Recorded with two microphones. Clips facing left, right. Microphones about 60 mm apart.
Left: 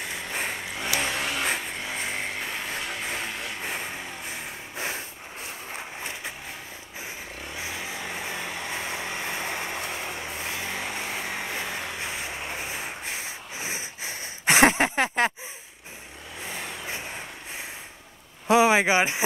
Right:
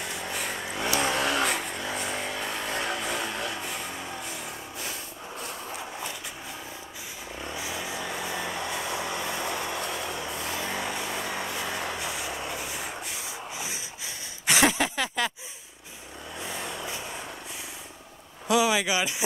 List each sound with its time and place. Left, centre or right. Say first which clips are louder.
0.3 s vehicle: left 3 dB; left
0.7 s vehicle: right 5 dB; right
1.8 s vehicle: even; left
2.7 s music: right 3 dB; right
3.5 s music: left 2 dB; left
5.7 s a sound: even; left
7.5 s vehicle: even; left
12.0 s rub: even; left
16.4 s vehicle: even; left
18.5 s a sound: left 5 dB; left